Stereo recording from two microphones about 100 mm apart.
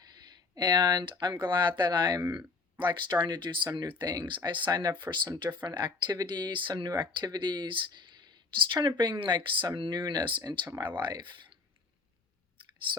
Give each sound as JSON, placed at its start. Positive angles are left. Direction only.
{"t": 0.5, "sound": "speech", "side_deg": -45}